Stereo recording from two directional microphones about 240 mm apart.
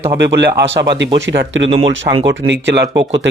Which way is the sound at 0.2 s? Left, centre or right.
Right.